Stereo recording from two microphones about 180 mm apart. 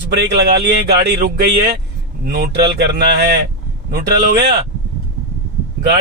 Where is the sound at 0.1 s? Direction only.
70° right (ahead or behind).